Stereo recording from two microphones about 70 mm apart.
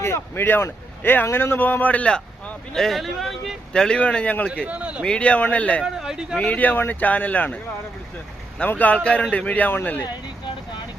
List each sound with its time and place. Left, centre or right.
0.0 s speech: left; by 3.6 s centre
3.7 s speech: centre
4.6 s a man's voice: centre
5.0 s speech: centre
5.8 s speech: centre
6.4 s speech: left
8.6 s speech: left